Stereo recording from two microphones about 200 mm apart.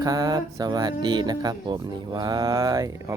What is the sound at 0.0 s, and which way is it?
Speech, 20° right (ahead or behind).